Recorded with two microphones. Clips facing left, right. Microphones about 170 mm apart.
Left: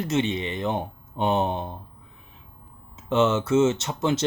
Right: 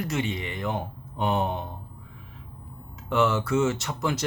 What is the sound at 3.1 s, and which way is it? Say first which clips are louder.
Speech: left 3 dB; 20° left (ahead or behind).